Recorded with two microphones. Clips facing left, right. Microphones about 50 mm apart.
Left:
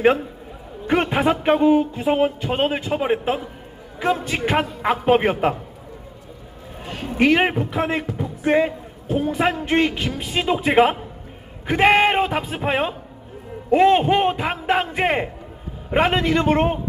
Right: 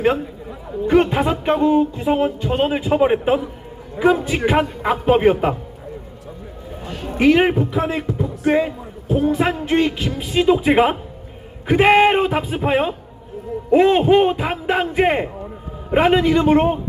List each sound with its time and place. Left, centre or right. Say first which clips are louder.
0.9 s music: right 3 dB; centre
4.0 s a man's voice: right 5 dB; centre
6.8 s music: even; left
7.2 s a man's voice: right 3 dB; centre